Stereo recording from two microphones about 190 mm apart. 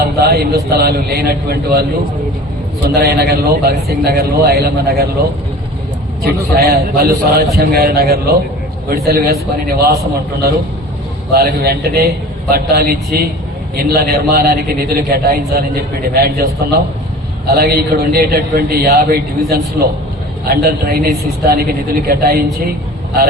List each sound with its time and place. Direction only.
0.0 s a man's voice: 55° right (ahead or behind)
2.9 s a man's voice: 55° right (ahead or behind)
6.2 s a man's voice: 55° right (ahead or behind)
11.3 s a man's voice: 55° right (ahead or behind)